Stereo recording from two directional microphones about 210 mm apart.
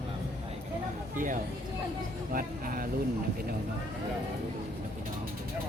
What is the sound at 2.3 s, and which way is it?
Vehicle, 40° right (ahead or behind).